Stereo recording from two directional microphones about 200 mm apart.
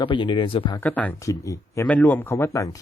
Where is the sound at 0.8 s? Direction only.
10° left (ahead or behind).